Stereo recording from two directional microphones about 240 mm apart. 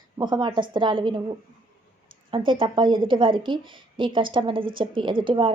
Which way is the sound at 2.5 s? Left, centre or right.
Centre.